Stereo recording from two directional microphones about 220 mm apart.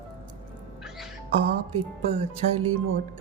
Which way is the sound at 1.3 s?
25° right (ahead or behind).